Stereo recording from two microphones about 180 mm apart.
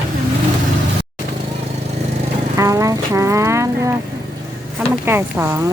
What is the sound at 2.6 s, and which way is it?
Speech, 20° right (ahead or behind).